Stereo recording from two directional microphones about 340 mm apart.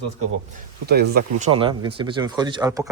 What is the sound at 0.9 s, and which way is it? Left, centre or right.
Speech, right.